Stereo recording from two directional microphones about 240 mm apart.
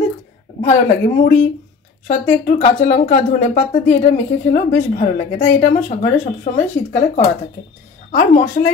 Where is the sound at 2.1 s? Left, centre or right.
Left.